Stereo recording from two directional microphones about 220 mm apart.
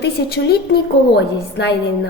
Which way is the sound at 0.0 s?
45° left (ahead or behind).